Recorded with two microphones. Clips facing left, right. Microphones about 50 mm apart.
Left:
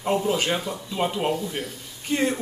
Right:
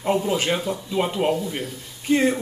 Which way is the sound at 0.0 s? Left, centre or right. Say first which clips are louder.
Right 1 dB; centre.